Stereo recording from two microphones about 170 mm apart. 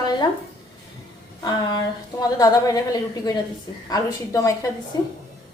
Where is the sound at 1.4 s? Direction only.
25° left (ahead or behind).